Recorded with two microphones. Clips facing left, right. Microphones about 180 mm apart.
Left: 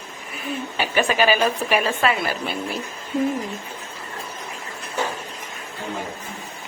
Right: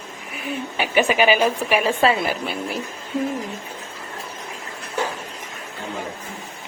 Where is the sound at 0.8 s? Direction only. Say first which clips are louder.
Right 2 dB; 15° right (ahead or behind).